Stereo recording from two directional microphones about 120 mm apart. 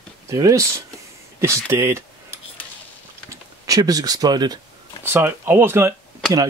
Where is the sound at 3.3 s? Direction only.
30° right (ahead or behind).